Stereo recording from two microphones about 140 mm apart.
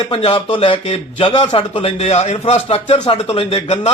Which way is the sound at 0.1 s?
35° left (ahead or behind).